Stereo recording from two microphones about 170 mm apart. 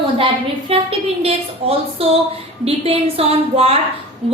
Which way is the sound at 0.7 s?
35° right (ahead or behind).